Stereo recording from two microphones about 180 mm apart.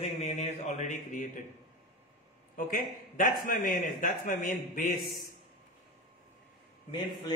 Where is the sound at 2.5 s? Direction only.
50° left (ahead or behind).